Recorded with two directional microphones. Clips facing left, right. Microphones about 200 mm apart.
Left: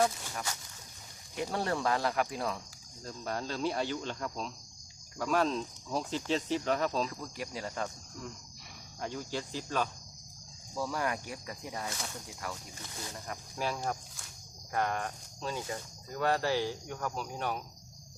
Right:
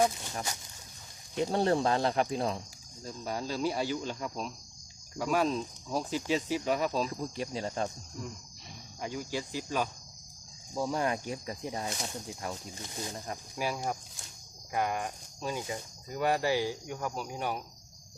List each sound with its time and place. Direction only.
1.4 s speech: 25° right (ahead or behind)
3.0 s speech: 5° right (ahead or behind)
7.1 s speech: 25° right (ahead or behind)
9.0 s speech: 10° right (ahead or behind)
10.8 s speech: 20° right (ahead or behind)
13.6 s speech: 10° right (ahead or behind)